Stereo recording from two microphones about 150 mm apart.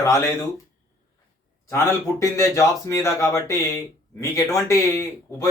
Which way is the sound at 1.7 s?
20° left (ahead or behind).